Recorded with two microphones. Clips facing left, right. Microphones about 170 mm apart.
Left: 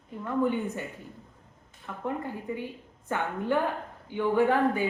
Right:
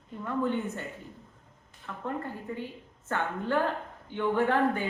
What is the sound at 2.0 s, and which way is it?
Speech, 15° left (ahead or behind).